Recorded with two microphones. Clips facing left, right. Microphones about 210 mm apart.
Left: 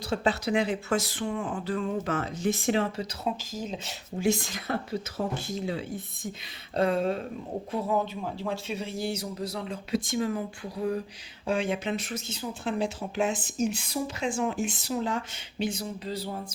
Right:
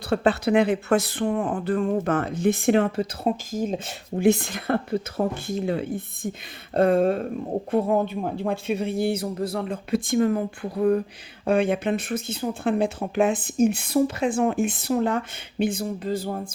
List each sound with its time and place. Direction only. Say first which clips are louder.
0.1 s speech: right 6 dB; 60° right (ahead or behind)